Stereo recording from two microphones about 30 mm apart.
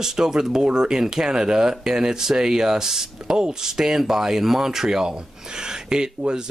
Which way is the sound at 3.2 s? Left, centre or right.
Right.